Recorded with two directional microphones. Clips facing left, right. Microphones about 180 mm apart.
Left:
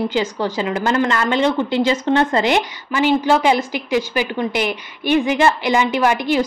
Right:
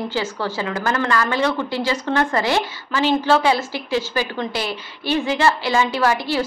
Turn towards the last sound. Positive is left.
turn(degrees=20)  # may be behind; listen again after turning